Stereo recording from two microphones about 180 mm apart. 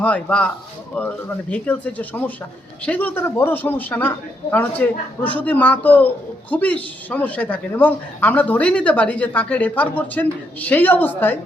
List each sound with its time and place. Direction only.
0.0 s speech: 5° left (ahead or behind)